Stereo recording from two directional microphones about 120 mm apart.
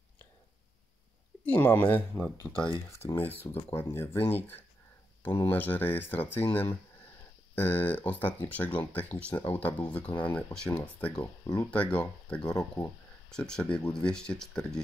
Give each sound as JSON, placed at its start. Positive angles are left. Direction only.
{"t": 1.4, "sound": "speech", "side_deg": 15}
{"t": 2.7, "sound": "speech", "side_deg": 25}
{"t": 11.1, "sound": "speech", "side_deg": 25}
{"t": 11.7, "sound": "speech", "side_deg": 10}